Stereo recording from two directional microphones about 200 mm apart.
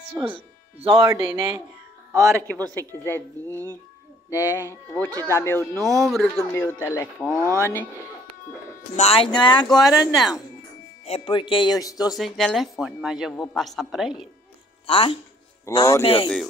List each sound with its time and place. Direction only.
0.2 s speech: 25° right (ahead or behind)
2.7 s speech: 10° left (ahead or behind)
5.9 s speech: centre (ahead or behind)
8.9 s speech: 30° left (ahead or behind)
12.2 s speech: centre (ahead or behind)
14.9 s speech: 25° left (ahead or behind)
15.7 s speech: 15° left (ahead or behind)
16.0 s speech: 30° left (ahead or behind)